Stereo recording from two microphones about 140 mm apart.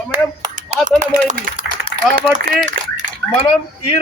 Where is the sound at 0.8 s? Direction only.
75° right (ahead or behind).